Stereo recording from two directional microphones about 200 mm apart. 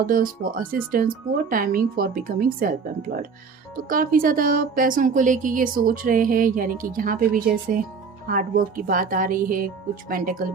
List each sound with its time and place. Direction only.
0.0 s a woman's voice: 45° right (ahead or behind)
3.8 s a woman's voice: 45° right (ahead or behind)